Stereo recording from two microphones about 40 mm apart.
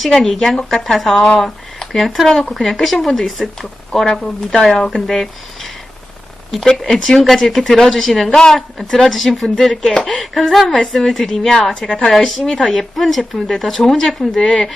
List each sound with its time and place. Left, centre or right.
0.3 s speech: centre
4.0 s a woman's voice: centre
6.7 s speech: centre
7.1 s speech: centre